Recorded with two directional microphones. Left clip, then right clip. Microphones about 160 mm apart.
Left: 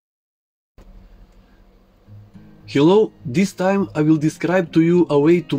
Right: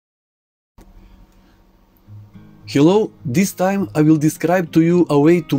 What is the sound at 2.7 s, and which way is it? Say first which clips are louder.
Speech: even; 55° right (ahead or behind).